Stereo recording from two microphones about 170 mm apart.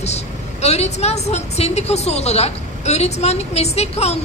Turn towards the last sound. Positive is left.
turn(degrees=40)  # may be behind; listen again after turning